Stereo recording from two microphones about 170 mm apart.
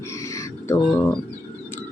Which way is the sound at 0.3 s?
15° left (ahead or behind).